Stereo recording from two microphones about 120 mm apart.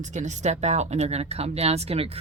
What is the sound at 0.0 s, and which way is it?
Speech, 80° right.